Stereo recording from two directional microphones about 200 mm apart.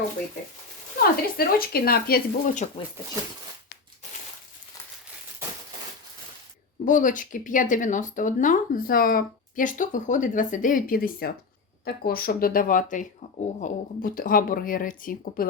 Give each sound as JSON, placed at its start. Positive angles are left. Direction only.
{"t": 0.9, "sound": "speech", "side_deg": 50}
{"t": 6.8, "sound": "speech", "side_deg": 40}